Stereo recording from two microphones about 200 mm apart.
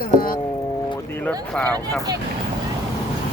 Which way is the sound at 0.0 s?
45° left (ahead or behind).